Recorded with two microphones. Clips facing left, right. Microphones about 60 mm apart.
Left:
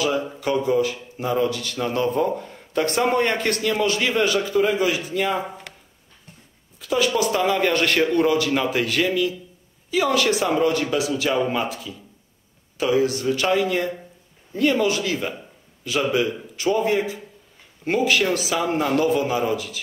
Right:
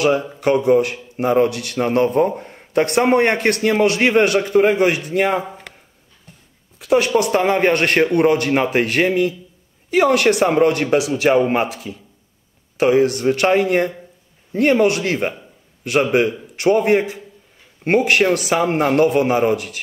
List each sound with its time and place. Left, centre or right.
0.4 s a man's voice: right
6.8 s speech: right
7.3 s a man's voice: right